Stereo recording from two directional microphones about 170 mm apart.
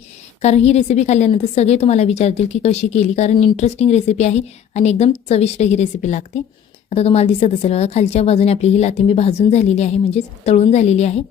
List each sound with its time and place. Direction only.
0.4 s a woman's voice: 40° left (ahead or behind)